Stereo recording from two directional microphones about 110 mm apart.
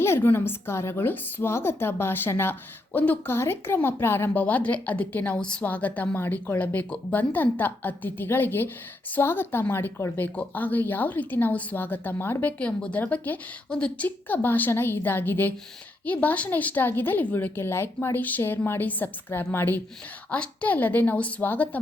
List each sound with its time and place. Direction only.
0.0 s a woman's voice: 20° left (ahead or behind)